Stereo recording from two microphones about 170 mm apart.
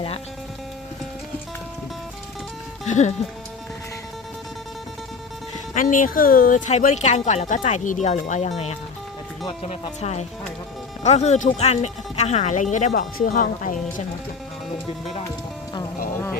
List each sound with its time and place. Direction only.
2.8 s speech: 45° left (ahead or behind)
5.7 s speech: 50° left (ahead or behind)
12.9 s speech: 55° left (ahead or behind)